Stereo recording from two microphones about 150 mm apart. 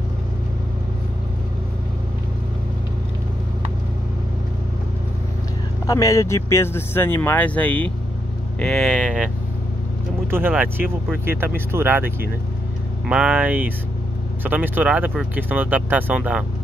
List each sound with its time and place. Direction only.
5.9 s speech: 20° left (ahead or behind); by 12.1 s 15° right (ahead or behind)
13.1 s speech: 10° right (ahead or behind)